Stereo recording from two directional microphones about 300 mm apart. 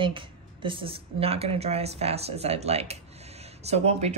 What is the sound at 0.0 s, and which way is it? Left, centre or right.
A woman's voice, centre.